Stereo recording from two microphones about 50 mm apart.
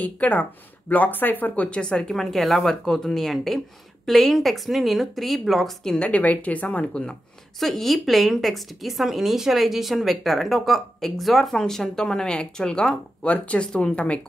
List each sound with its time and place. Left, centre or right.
0.0 s speech: left
1.5 s a woman's voice: left
2.1 s a woman's voice: centre
5.9 s a woman's voice: left
7.6 s a woman's voice: centre; by 14.2 s left